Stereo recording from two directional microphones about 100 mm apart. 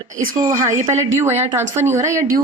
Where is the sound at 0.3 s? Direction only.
30° right (ahead or behind).